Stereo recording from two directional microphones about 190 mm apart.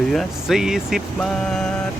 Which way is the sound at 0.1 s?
Centre (ahead or behind).